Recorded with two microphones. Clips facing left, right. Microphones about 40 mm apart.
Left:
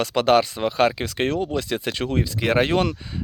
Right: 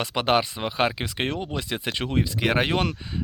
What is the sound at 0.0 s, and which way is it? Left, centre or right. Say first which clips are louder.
Speech: left 4 dB; right.